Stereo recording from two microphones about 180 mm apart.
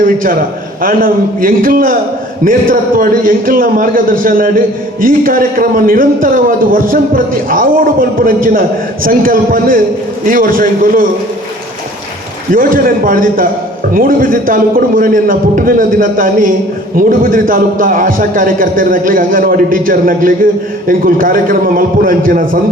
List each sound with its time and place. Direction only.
0.0 s a man's voice: 50° right (ahead or behind)
12.5 s a man's voice: 50° right (ahead or behind)